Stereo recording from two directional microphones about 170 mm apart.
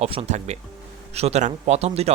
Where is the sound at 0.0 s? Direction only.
35° right (ahead or behind).